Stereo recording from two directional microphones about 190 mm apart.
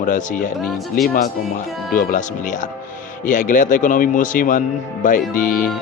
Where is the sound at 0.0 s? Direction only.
45° left (ahead or behind).